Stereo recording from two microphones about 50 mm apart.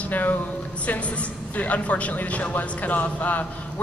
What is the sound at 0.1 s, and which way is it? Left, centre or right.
A woman's voice, left.